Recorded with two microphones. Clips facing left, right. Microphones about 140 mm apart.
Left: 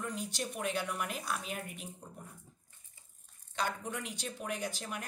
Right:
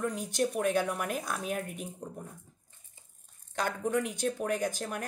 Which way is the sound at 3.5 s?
50° right (ahead or behind).